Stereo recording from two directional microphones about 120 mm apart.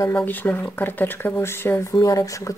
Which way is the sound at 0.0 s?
20° left (ahead or behind).